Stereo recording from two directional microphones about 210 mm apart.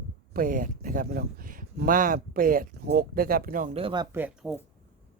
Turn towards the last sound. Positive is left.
turn(degrees=-5)  # may be behind; listen again after turning